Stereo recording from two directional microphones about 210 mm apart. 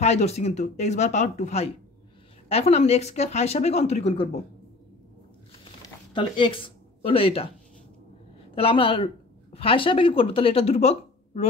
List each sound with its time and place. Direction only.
0.0 s speech: 30° left (ahead or behind)
6.1 s speech: 25° left (ahead or behind)
8.5 s speech: 25° left (ahead or behind)